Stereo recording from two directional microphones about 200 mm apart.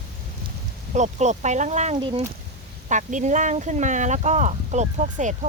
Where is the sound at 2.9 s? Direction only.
40° right (ahead or behind).